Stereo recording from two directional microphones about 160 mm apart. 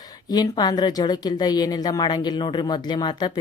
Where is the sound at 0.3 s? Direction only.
25° left (ahead or behind).